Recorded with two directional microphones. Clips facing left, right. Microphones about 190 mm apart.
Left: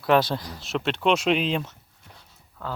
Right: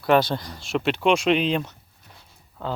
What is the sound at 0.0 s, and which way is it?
Speech, centre (ahead or behind).